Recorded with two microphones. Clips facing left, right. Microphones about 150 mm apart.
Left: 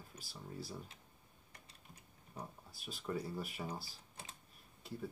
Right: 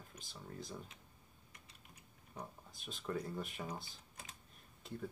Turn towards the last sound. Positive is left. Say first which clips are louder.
# left 1 dB
turn(degrees=5)  # may be behind; listen again after turning